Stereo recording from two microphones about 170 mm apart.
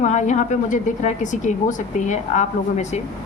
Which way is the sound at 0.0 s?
45° left (ahead or behind).